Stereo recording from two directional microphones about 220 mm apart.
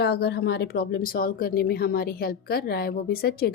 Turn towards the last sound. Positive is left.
turn(degrees=45)  # may be behind; listen again after turning